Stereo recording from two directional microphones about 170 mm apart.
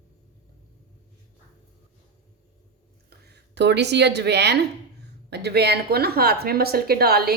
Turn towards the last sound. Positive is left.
turn(degrees=-65)  # may be behind; listen again after turning